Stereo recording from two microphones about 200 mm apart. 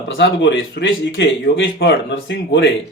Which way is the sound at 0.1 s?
65° left (ahead or behind).